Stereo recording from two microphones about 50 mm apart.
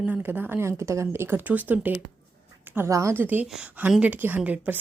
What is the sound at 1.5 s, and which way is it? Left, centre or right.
Speech, right.